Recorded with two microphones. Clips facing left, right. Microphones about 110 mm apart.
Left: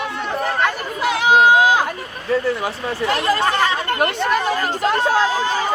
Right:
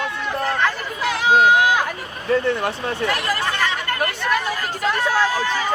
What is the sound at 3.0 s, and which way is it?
Speech, 25° left (ahead or behind).